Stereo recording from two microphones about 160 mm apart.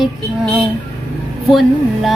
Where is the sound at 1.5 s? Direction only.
Centre (ahead or behind).